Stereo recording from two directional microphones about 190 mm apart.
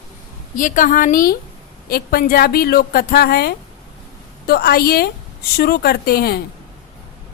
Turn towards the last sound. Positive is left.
turn(degrees=55)  # may be behind; listen again after turning